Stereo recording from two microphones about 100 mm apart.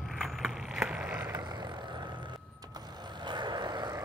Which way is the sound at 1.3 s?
45° right (ahead or behind).